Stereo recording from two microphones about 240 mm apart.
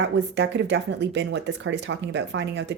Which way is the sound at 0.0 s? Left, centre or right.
Right.